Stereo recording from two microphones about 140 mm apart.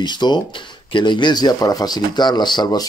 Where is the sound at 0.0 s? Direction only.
30° left (ahead or behind).